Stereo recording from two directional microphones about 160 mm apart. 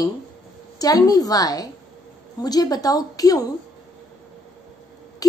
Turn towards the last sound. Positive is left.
turn(degrees=20)  # may be behind; listen again after turning